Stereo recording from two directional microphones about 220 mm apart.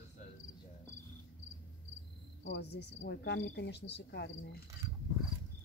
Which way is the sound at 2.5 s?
50° left (ahead or behind).